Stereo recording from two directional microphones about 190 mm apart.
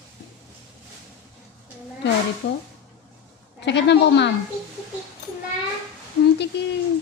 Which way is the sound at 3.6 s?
65° left (ahead or behind).